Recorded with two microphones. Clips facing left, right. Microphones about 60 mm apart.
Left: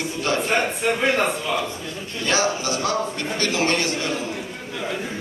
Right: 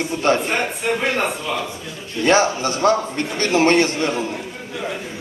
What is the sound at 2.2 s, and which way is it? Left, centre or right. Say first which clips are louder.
A man's voice: right 6 dB; right.